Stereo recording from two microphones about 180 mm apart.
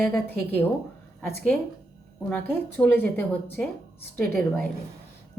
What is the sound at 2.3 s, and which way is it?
Speech, 5° left (ahead or behind).